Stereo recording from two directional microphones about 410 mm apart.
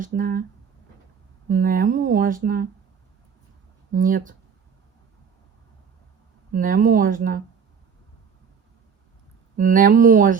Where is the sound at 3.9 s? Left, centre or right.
Centre.